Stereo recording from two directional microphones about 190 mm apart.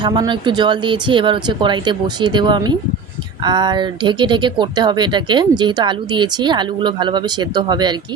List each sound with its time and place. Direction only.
0.0 s speech: 25° right (ahead or behind)